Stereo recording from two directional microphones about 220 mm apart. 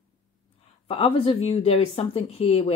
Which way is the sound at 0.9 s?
25° left (ahead or behind).